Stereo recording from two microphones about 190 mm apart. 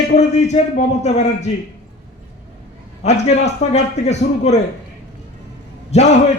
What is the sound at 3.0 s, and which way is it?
A man's voice, 35° left (ahead or behind).